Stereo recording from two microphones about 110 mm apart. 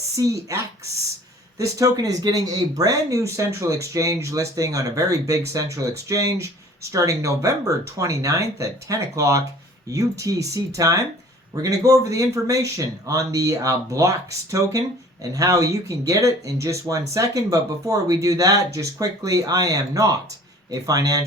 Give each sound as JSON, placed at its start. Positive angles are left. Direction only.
{"t": 0.2, "sound": "speech", "side_deg": -30}